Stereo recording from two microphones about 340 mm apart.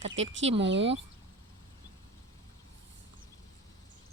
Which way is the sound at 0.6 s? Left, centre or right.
Right.